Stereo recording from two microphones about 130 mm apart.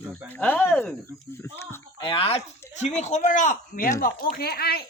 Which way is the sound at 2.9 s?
60° left (ahead or behind).